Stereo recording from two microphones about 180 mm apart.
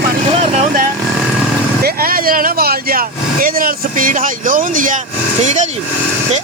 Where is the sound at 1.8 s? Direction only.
55° right (ahead or behind).